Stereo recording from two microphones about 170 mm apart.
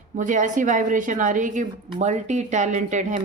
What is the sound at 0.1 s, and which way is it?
Speech, 50° right (ahead or behind).